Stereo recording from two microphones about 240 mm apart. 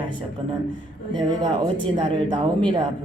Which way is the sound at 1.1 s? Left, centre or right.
Centre.